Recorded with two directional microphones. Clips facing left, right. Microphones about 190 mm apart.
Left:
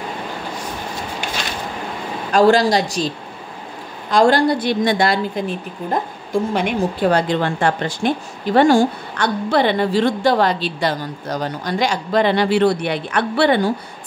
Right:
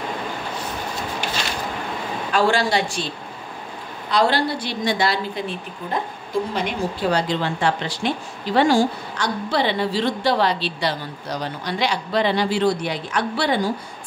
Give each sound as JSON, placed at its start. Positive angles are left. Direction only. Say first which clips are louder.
{"t": 2.3, "sound": "a woman's voice", "louder": "left 6 dB", "side_deg": 40}
{"t": 4.1, "sound": "speech", "louder": "left 6 dB", "side_deg": 45}
{"t": 6.5, "sound": "speech", "louder": "left 5 dB", "side_deg": 55}